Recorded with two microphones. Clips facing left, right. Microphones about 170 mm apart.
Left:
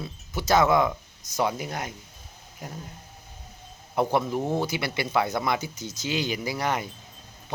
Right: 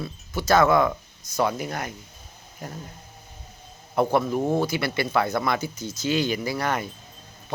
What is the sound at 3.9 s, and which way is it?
A man's voice, 20° left (ahead or behind).